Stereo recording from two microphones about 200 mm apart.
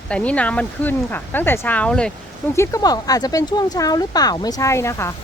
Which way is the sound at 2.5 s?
15° left (ahead or behind).